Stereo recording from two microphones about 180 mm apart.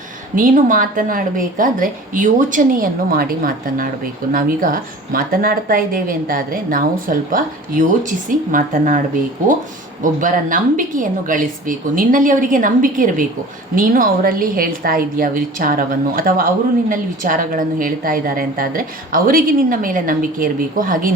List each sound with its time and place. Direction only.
0.3 s a woman's voice: 45° right (ahead or behind)
10.0 s a woman's voice: 45° right (ahead or behind)